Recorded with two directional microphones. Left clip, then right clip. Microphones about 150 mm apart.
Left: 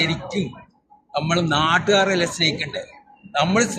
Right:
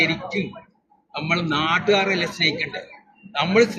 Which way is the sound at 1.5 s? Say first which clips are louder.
Left 1 dB; 35° left (ahead or behind).